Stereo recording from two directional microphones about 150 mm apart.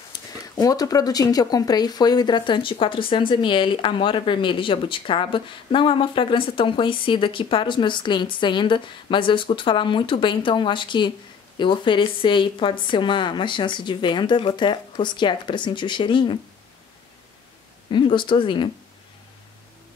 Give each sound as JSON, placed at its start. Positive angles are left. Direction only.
{"t": 0.1, "sound": "speech", "side_deg": 25}
{"t": 17.9, "sound": "speech", "side_deg": 35}